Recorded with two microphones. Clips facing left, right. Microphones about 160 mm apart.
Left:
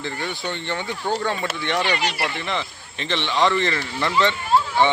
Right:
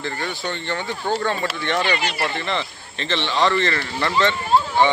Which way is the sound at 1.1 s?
15° left (ahead or behind).